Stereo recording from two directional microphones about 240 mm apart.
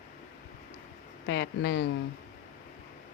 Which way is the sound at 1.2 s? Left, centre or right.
Left.